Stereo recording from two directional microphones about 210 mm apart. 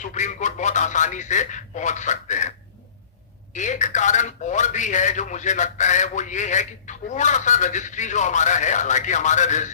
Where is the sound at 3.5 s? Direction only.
35° left (ahead or behind).